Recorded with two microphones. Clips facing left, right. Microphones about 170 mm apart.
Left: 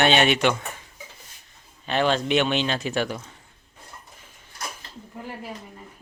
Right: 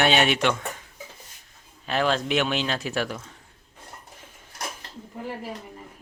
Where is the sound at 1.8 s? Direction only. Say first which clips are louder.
Left 2 dB; centre (ahead or behind).